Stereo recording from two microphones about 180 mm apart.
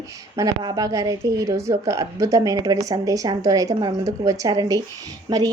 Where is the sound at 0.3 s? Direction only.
20° right (ahead or behind).